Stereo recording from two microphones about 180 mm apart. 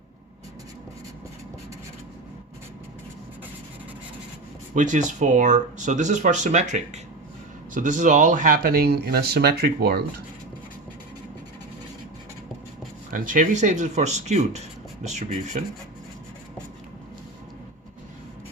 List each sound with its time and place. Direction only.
4.7 s speech: 45° right (ahead or behind); by 10.0 s 60° right (ahead or behind)
13.1 s speech: 45° right (ahead or behind)